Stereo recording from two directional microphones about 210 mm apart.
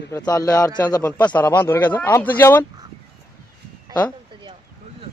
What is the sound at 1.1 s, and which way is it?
Speech, 5° left (ahead or behind).